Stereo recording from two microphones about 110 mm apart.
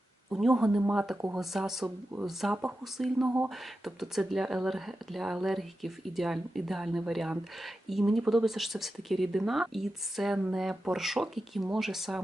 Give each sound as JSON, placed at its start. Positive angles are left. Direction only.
{"t": 0.3, "sound": "speech", "side_deg": -5}
{"t": 3.2, "sound": "speech", "side_deg": -20}
{"t": 3.5, "sound": "speech", "side_deg": 0}